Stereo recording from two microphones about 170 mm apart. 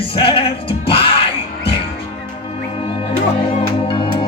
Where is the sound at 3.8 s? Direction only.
30° left (ahead or behind).